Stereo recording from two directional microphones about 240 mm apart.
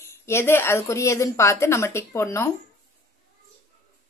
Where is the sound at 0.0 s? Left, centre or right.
Centre.